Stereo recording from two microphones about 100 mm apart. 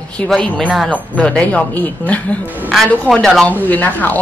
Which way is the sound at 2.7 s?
5° left (ahead or behind).